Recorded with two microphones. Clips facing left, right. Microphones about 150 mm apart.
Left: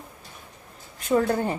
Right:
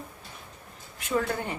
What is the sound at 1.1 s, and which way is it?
Speech, 35° left (ahead or behind).